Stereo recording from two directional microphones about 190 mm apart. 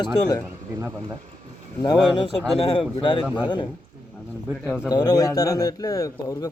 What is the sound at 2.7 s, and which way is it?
Speech, 25° left (ahead or behind).